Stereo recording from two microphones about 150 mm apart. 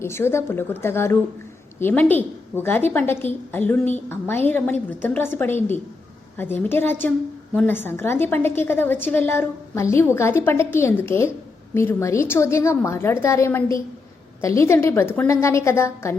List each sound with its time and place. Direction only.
0.0 s a woman's voice: 15° left (ahead or behind)